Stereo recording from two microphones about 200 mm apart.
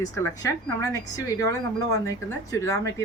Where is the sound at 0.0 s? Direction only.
15° left (ahead or behind).